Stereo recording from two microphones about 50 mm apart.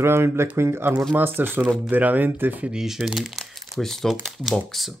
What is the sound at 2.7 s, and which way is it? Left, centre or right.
Speech, centre.